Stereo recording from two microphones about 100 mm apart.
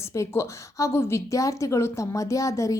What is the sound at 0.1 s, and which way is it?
A woman's voice, 30° left (ahead or behind).